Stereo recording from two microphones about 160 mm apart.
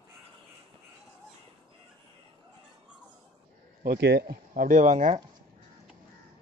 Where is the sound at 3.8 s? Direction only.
85° right; by 5.1 s 50° right (ahead or behind).